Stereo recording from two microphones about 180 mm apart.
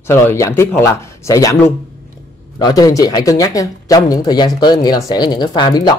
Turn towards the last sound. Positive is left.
turn(degrees=25)  # may be behind; listen again after turning